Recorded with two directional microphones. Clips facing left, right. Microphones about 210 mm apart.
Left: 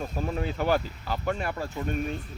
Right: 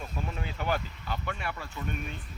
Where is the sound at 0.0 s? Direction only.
40° left (ahead or behind).